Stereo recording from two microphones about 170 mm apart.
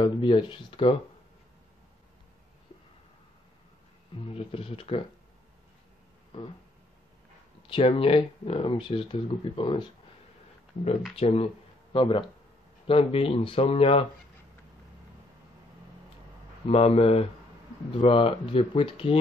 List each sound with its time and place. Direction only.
0.0 s speech: 30° left (ahead or behind)
4.3 s speech: 35° left (ahead or behind)
7.6 s speech: 35° left (ahead or behind)
11.1 s speech: 35° left (ahead or behind)
16.6 s speech: 35° left (ahead or behind)